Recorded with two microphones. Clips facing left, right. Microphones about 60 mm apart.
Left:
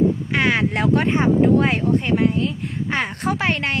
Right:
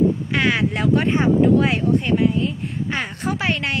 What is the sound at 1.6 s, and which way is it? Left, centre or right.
Speech, left.